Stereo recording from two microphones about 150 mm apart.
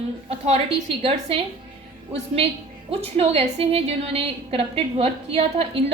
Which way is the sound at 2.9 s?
40° right (ahead or behind).